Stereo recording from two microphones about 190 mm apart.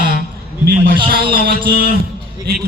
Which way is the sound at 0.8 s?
50° right (ahead or behind).